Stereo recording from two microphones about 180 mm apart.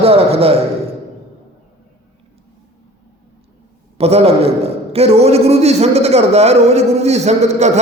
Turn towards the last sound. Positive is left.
turn(degrees=-40)  # may be behind; listen again after turning